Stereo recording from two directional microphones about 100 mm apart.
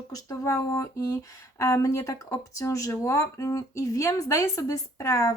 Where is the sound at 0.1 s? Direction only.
35° left (ahead or behind).